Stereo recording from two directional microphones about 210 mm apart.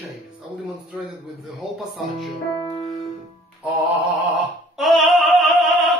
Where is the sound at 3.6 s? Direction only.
5° right (ahead or behind).